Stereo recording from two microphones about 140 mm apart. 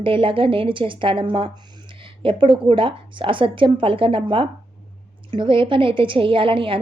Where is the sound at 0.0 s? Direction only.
40° right (ahead or behind).